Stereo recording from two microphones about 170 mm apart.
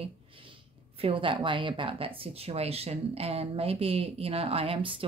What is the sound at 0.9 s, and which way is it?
Speech, 35° right (ahead or behind).